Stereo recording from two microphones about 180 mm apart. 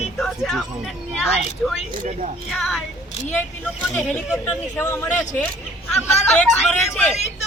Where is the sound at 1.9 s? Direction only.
45° right (ahead or behind).